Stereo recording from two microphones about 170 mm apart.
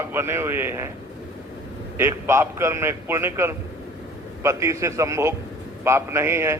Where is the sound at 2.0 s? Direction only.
15° right (ahead or behind).